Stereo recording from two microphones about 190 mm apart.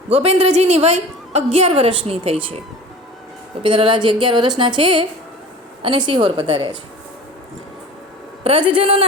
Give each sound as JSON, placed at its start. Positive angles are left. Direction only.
{"t": 0.1, "sound": "a woman's voice", "side_deg": -35}
{"t": 3.6, "sound": "a woman's voice", "side_deg": -25}
{"t": 8.4, "sound": "a woman's voice", "side_deg": -25}